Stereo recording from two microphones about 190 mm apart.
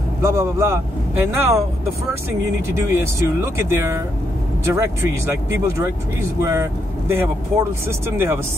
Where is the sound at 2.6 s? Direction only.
15° right (ahead or behind).